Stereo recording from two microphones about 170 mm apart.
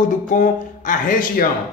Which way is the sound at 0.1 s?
50° left (ahead or behind).